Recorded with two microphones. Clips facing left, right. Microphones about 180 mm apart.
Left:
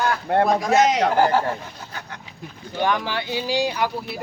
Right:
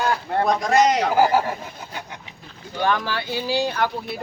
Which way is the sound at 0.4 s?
5° left (ahead or behind).